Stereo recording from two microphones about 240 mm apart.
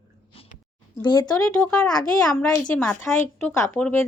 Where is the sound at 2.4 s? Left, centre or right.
Centre.